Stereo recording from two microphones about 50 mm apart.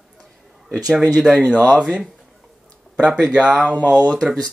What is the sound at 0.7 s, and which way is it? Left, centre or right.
Speech, centre.